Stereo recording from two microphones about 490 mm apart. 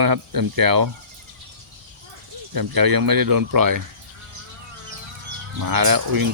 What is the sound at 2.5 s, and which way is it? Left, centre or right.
Speech, right.